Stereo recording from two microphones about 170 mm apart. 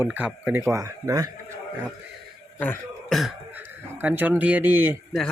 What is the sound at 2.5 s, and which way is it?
Speech, 15° left (ahead or behind).